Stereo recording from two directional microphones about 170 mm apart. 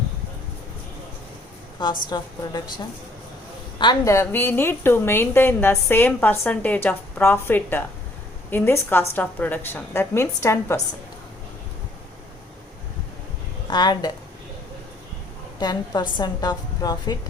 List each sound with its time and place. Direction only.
1.8 s a woman's voice: 25° left (ahead or behind)
3.8 s a woman's voice: 20° left (ahead or behind)
13.7 s a woman's voice: 25° left (ahead or behind)
15.5 s a woman's voice: 25° left (ahead or behind)